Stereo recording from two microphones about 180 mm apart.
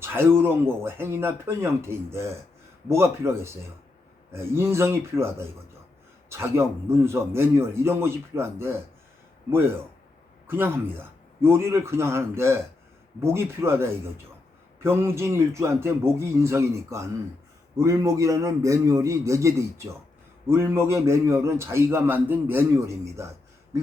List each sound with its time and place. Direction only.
0.0 s a man's voice: 15° right (ahead or behind)
10.4 s a man's voice: 15° right (ahead or behind)